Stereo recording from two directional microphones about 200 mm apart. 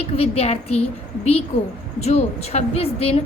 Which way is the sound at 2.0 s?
30° left (ahead or behind).